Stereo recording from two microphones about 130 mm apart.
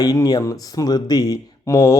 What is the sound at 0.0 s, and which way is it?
Speech, 30° left (ahead or behind).